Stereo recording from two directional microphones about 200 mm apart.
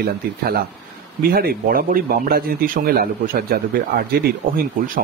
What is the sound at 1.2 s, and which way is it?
Speech, 50° right (ahead or behind).